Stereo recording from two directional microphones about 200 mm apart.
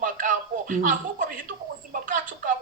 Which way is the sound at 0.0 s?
40° right (ahead or behind).